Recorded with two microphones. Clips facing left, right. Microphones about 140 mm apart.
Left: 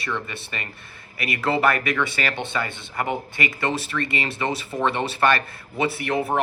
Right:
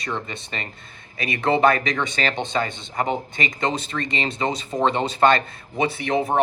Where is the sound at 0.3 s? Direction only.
25° right (ahead or behind).